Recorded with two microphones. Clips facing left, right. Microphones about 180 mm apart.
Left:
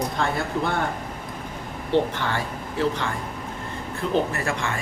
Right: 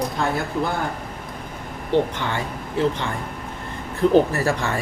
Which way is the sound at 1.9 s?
15° right (ahead or behind).